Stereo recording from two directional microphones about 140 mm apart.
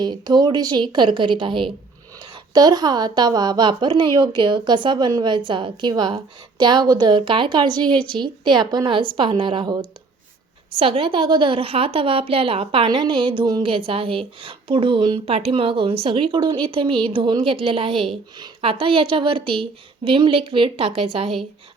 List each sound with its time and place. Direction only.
0.0 s a woman's voice: 30° right (ahead or behind)
10.8 s a woman's voice: 40° right (ahead or behind)